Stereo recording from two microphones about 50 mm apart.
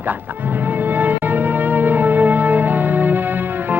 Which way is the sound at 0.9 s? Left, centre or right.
Right.